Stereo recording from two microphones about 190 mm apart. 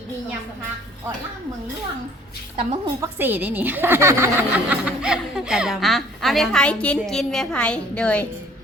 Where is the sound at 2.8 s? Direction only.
15° right (ahead or behind); by 8.2 s 5° left (ahead or behind).